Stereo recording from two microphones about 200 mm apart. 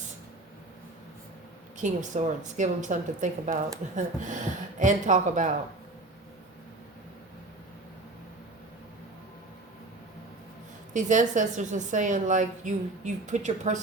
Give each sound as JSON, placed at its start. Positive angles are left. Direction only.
{"t": 1.8, "sound": "a woman's voice", "side_deg": -40}
{"t": 10.9, "sound": "a woman's voice", "side_deg": -40}